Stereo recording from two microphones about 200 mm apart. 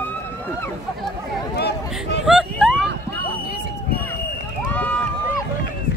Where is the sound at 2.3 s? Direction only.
Centre (ahead or behind).